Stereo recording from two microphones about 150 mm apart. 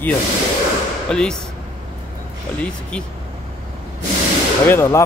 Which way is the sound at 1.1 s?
5° left (ahead or behind).